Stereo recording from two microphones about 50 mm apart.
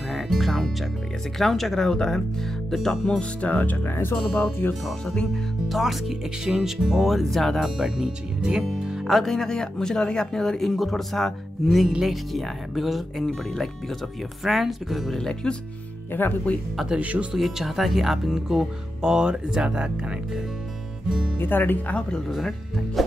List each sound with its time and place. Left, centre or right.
0.1 s speech: centre
3.2 s speech: left
5.3 s speech: centre
8.4 s speech: centre
9.0 s speech: centre
15.1 s speech: centre
16.1 s speech: left
17.0 s speech: right
17.3 s speech: centre
21.4 s speech: left
23.0 s music: centre